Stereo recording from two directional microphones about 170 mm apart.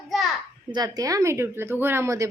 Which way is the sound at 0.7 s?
20° right (ahead or behind).